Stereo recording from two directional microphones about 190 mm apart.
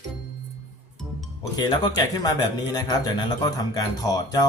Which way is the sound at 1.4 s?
20° left (ahead or behind).